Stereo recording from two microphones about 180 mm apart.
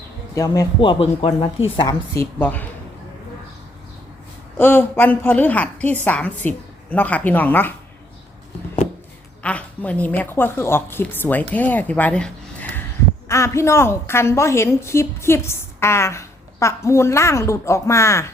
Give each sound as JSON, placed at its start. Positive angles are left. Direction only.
{"t": 0.3, "sound": "a man's voice", "side_deg": 20}
{"t": 2.1, "sound": "a woman's voice", "side_deg": 10}
{"t": 4.5, "sound": "a woman's voice", "side_deg": 10}
{"t": 9.4, "sound": "a woman's voice", "side_deg": 5}